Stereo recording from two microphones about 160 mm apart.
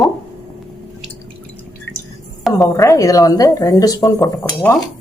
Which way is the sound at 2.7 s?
20° left (ahead or behind).